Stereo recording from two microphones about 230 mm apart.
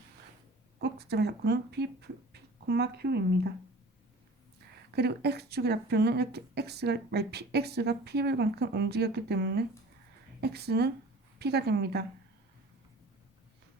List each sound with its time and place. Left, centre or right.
0.8 s speech: right
4.9 s speech: right